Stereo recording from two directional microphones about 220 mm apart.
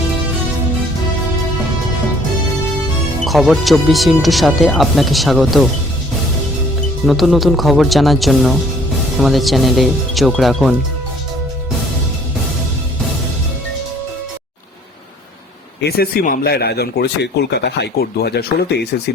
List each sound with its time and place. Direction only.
3.2 s speech: centre (ahead or behind)
7.0 s speech: centre (ahead or behind)
15.8 s speech: 45° left (ahead or behind)